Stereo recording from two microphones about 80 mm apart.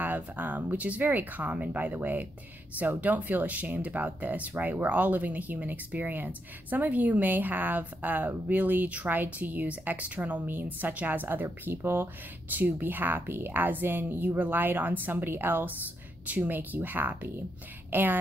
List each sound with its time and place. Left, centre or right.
0.0 s speech: right